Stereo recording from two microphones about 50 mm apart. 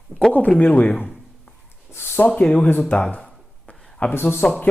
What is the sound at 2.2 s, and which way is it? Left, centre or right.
Speech, left.